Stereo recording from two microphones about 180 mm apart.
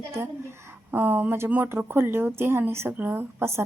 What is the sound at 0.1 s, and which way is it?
Speech, 15° right (ahead or behind).